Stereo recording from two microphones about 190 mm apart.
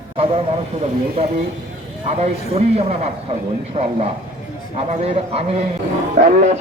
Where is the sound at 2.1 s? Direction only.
35° right (ahead or behind).